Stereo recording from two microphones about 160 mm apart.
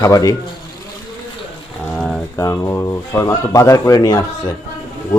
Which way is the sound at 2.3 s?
20° left (ahead or behind).